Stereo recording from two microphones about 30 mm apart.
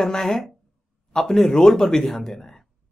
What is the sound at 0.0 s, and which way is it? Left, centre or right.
Speech, centre.